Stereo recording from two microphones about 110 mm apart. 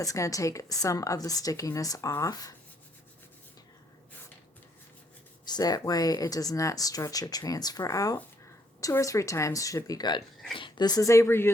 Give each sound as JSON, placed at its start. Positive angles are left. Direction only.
{"t": 0.0, "sound": "speech", "side_deg": 30}
{"t": 5.5, "sound": "speech", "side_deg": 35}